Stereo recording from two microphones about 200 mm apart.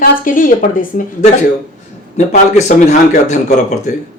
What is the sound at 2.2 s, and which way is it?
A man's voice, 35° left (ahead or behind).